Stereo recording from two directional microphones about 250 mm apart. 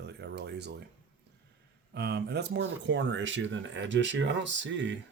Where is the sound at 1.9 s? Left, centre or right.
Right.